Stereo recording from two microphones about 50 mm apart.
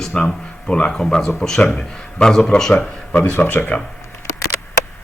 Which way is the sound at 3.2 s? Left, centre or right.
Left.